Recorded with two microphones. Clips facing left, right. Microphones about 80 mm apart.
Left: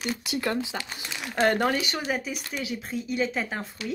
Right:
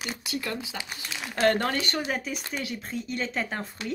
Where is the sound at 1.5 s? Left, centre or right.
Centre.